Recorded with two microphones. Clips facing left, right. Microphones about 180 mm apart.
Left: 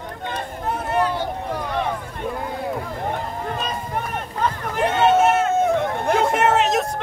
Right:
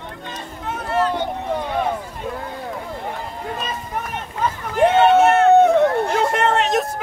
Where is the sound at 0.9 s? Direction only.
15° left (ahead or behind).